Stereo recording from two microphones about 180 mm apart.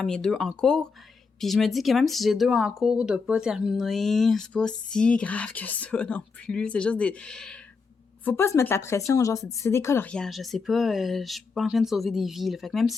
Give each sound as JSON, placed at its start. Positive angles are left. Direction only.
{"t": 0.0, "sound": "a woman's voice", "side_deg": 5}